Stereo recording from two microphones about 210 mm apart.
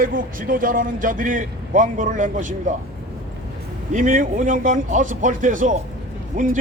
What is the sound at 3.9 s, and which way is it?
A man's voice, 40° right (ahead or behind).